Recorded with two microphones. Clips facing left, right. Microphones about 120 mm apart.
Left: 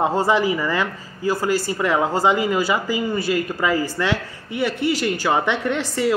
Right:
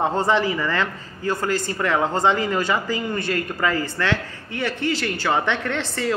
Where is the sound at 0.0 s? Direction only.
10° left (ahead or behind).